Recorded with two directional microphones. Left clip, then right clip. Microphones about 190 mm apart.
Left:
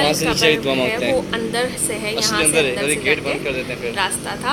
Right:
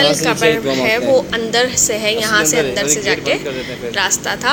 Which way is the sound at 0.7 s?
25° right (ahead or behind).